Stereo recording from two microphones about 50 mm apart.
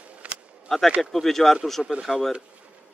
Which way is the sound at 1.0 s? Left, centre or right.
Centre.